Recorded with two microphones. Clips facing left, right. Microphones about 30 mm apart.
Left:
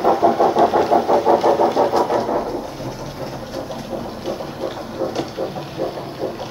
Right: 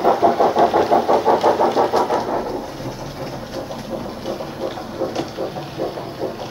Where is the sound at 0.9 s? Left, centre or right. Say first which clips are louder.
Even; right.